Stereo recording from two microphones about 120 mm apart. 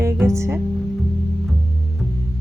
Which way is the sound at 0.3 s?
25° right (ahead or behind).